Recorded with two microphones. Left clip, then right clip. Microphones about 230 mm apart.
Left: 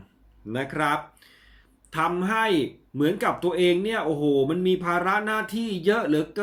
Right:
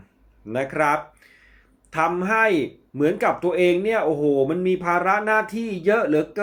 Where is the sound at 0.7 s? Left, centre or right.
Centre.